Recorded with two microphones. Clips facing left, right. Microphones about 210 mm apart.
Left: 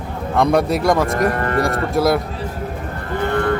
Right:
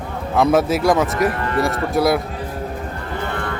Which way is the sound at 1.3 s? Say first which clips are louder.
Left 2 dB; 50° left (ahead or behind).